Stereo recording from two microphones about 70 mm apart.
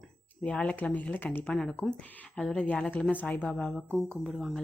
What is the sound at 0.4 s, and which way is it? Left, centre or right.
Speech, centre.